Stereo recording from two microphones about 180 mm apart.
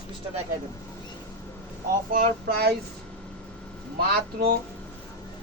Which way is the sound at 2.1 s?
55° right (ahead or behind).